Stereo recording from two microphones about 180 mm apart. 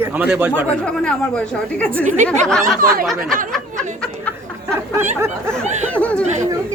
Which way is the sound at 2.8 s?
55° right (ahead or behind).